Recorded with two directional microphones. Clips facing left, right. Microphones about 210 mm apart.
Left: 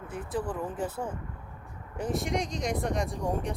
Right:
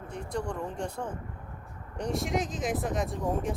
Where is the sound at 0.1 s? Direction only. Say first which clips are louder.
Left 1 dB; 5° left (ahead or behind).